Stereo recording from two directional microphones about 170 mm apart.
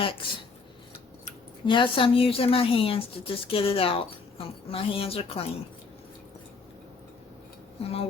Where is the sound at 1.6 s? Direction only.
30° left (ahead or behind).